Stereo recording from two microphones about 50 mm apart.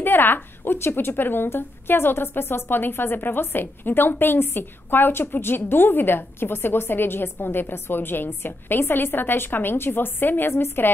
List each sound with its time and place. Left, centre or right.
0.0 s a woman's voice: left
10.5 s a woman's voice: left